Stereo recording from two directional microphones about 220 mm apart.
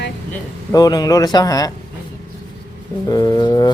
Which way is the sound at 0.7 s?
15° left (ahead or behind).